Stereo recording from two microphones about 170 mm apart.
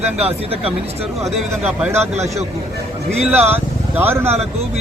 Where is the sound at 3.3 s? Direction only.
10° right (ahead or behind).